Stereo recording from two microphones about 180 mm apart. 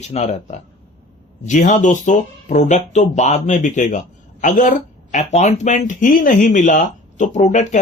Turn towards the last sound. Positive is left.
turn(degrees=45)  # may be behind; listen again after turning